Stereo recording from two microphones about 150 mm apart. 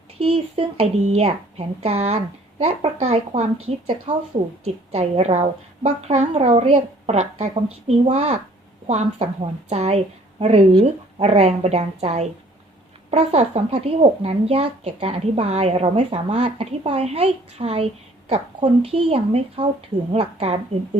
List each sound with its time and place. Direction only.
0.2 s a woman's voice: 40° right (ahead or behind)